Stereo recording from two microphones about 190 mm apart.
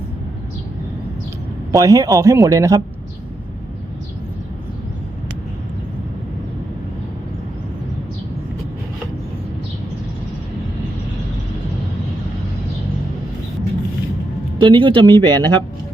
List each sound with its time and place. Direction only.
1.7 s speech: 15° right (ahead or behind)
14.6 s speech: 25° right (ahead or behind)